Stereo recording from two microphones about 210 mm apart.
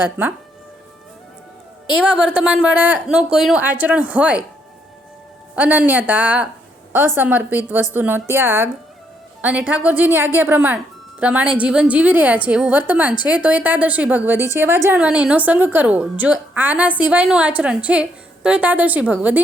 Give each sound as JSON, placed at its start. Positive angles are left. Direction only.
{"t": 2.0, "sound": "a woman's voice", "side_deg": -5}
{"t": 5.5, "sound": "a woman's voice", "side_deg": -10}